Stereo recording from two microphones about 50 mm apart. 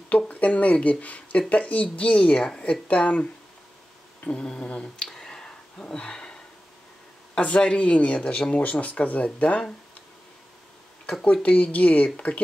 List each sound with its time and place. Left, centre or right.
0.3 s speech: left
5.1 s a sound: centre
7.3 s speech: left
11.4 s speech: left